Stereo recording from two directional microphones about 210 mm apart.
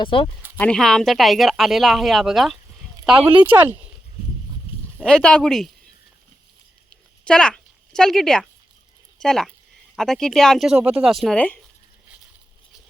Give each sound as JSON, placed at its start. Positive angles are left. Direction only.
{"t": 0.0, "sound": "speech", "side_deg": 25}
{"t": 0.6, "sound": "speech", "side_deg": 0}
{"t": 4.9, "sound": "speech", "side_deg": 5}
{"t": 6.9, "sound": "a sound", "side_deg": 5}
{"t": 9.2, "sound": "speech", "side_deg": 0}